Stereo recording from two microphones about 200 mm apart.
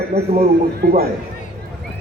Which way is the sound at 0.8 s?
55° right (ahead or behind).